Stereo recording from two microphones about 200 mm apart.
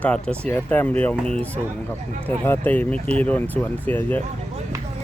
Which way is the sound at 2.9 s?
30° right (ahead or behind).